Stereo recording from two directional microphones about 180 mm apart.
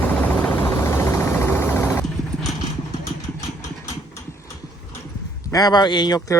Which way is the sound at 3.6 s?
20° left (ahead or behind).